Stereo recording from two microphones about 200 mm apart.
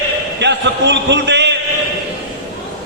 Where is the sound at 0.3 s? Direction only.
60° right (ahead or behind).